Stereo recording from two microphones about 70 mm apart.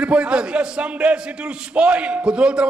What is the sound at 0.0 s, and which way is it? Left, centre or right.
A man's voice, centre.